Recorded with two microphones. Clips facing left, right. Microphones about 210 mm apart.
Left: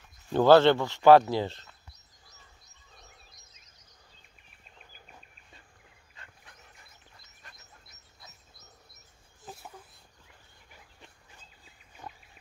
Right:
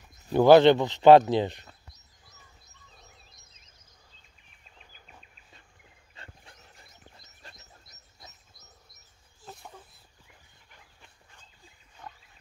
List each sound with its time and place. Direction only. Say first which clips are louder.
0.3 s speech: right 3 dB; 15° right (ahead or behind)
6.1 s dog: right 5 dB; 30° right (ahead or behind)
7.4 s bird: right 5 dB; 30° right (ahead or behind)
12.0 s wild animals: left 1 dB; 10° left (ahead or behind)